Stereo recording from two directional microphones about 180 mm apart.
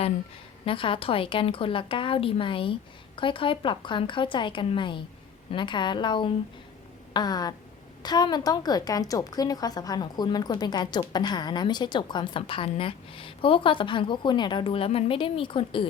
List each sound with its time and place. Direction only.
0.6 s a woman's voice: 30° left (ahead or behind)